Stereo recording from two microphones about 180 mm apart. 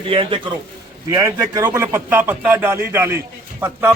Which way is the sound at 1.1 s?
20° right (ahead or behind).